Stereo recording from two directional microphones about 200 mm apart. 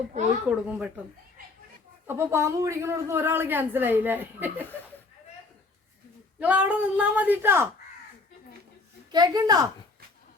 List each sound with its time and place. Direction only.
0.4 s a woman's voice: 5° right (ahead or behind)
2.0 s a woman's voice: 15° right (ahead or behind)
6.4 s a woman's voice: 5° right (ahead or behind)
9.1 s a child's voice: 20° right (ahead or behind)